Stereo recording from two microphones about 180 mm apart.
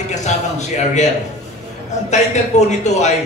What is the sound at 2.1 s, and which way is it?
A man's voice, 40° left (ahead or behind).